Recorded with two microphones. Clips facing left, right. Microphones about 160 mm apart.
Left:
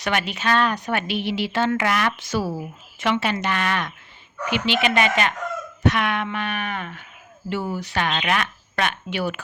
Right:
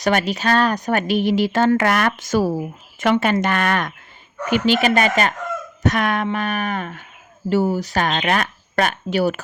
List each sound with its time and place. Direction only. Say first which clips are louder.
0.0 s speech: right 5 dB; 40° right (ahead or behind)